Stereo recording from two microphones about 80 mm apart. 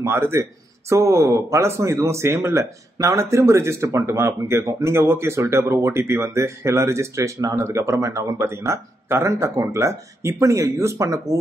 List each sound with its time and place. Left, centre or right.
0.0 s speech: right